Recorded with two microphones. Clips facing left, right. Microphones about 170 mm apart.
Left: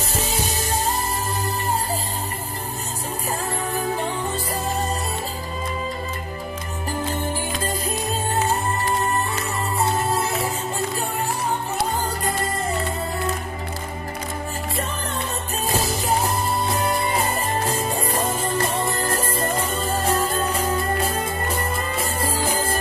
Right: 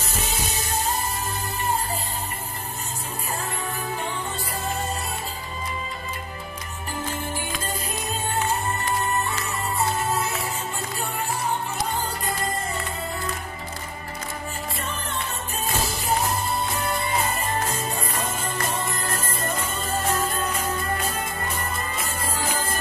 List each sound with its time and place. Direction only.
8.4 s music: 35° left (ahead or behind)
16.4 s music: 35° left (ahead or behind)